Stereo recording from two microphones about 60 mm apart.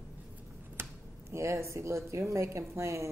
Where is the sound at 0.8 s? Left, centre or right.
Right.